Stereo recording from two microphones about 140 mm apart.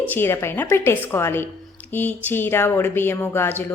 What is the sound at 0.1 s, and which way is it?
A woman's voice, 15° left (ahead or behind).